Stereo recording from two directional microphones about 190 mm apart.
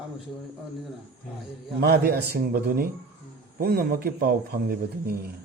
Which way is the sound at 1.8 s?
55° right (ahead or behind).